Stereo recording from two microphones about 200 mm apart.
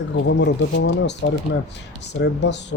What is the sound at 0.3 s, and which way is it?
Speech, 60° left (ahead or behind).